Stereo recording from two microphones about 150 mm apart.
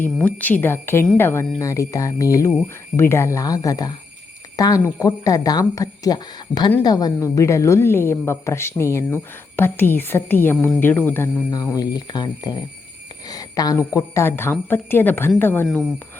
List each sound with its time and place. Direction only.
0.0 s a woman's voice: 10° left (ahead or behind)
15.6 s speech: centre (ahead or behind)